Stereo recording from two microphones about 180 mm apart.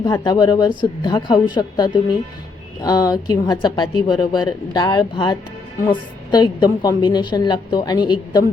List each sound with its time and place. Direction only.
0.0 s a woman's voice: 25° left (ahead or behind)